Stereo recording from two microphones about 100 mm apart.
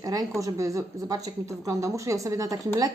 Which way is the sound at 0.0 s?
35° right (ahead or behind).